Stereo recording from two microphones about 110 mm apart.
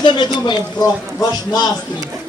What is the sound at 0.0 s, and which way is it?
A man's voice, 45° left (ahead or behind).